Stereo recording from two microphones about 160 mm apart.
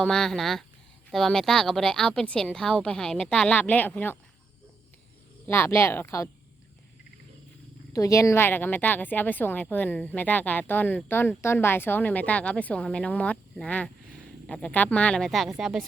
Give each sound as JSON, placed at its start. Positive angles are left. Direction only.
{"t": 0.0, "sound": "speech", "side_deg": 5}
{"t": 5.5, "sound": "a woman's voice", "side_deg": 15}
{"t": 7.9, "sound": "a woman's voice", "side_deg": 20}